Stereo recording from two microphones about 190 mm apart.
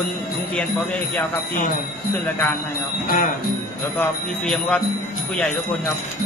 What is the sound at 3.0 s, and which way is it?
Speech, 45° left (ahead or behind).